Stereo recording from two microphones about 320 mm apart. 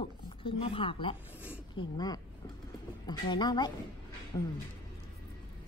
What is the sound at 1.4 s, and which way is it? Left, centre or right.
Speech, centre.